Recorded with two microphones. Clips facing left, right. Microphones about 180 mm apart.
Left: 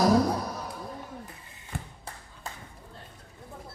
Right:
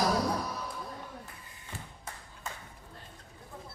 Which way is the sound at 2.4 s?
35° left (ahead or behind).